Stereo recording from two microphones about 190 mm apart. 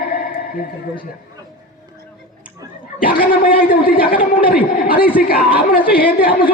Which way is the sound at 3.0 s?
50° left (ahead or behind).